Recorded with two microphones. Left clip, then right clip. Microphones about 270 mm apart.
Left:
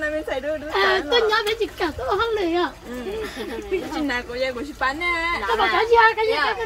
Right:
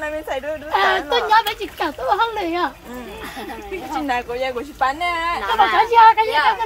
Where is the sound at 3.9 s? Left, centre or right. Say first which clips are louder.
Right 3 dB; right.